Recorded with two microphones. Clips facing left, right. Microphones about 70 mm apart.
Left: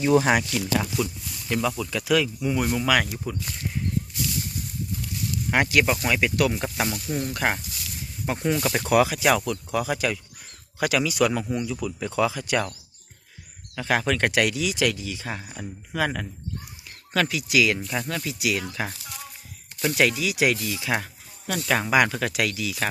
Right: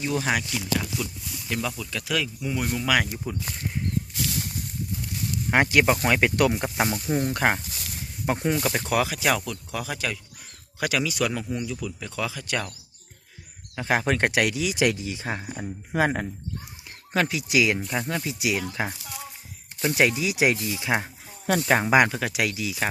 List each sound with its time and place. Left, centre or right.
0.0 s speech: left
1.0 s speech: centre
3.4 s speech: right
4.2 s a sound: right
5.5 s speech: right
6.5 s speech: right
8.4 s speech: centre
8.7 s speech: centre
13.7 s speech: centre
14.3 s speech: centre
14.8 s speech: right
22.1 s speech: centre